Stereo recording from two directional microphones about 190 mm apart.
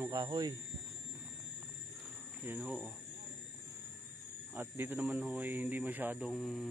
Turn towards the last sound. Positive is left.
turn(degrees=0)  # may be behind; listen again after turning